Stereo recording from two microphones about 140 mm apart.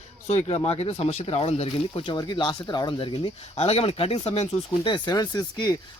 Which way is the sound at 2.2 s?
35° left (ahead or behind).